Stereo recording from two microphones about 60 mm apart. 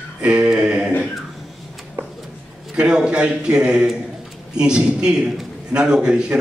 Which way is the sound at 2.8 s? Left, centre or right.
Centre.